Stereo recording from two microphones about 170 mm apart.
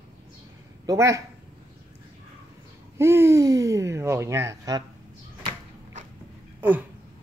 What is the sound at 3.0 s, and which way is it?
Speech, 15° right (ahead or behind).